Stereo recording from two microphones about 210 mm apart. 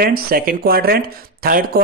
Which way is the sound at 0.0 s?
45° right (ahead or behind).